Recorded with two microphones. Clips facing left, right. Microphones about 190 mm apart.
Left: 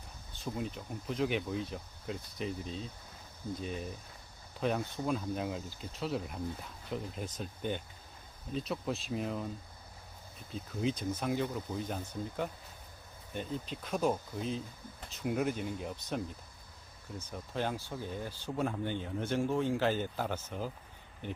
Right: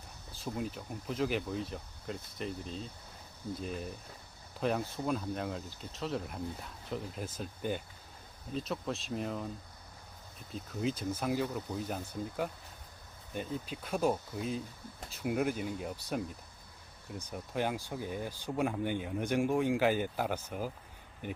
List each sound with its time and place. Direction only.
0.4 s speech: 5° right (ahead or behind)
10.5 s speech: centre (ahead or behind)